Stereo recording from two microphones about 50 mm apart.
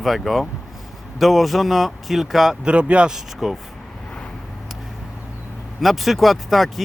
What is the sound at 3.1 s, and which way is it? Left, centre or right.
Speech, centre.